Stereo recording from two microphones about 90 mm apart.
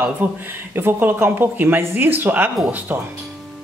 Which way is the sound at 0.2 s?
20° right (ahead or behind).